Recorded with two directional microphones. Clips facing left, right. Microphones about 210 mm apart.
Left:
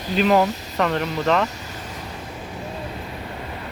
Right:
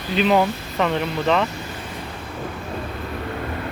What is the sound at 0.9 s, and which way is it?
Speech, 40° left (ahead or behind).